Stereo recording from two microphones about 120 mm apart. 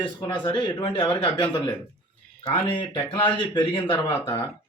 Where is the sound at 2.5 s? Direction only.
40° left (ahead or behind).